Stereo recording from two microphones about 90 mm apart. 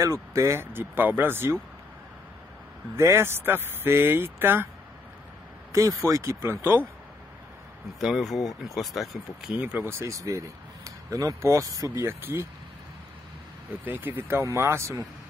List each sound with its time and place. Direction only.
0.0 s speech: 35° right (ahead or behind)
3.0 s speech: 25° right (ahead or behind)
5.7 s speech: 40° right (ahead or behind)
6.4 s speech: 25° right (ahead or behind)
8.0 s speech: centre (ahead or behind)
9.6 s speech: 15° right (ahead or behind)
9.8 s speech: 35° right (ahead or behind)
11.9 s speech: 25° right (ahead or behind)
14.0 s speech: 25° right (ahead or behind)